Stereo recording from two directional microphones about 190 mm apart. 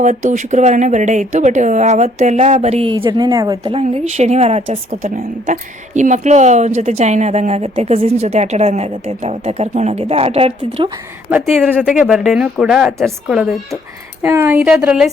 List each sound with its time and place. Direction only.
0.0 s a woman's voice: 40° right (ahead or behind)
3.0 s a woman's voice: 20° right (ahead or behind)
3.8 s a woman's voice: 35° right (ahead or behind)
11.3 s speech: 10° right (ahead or behind)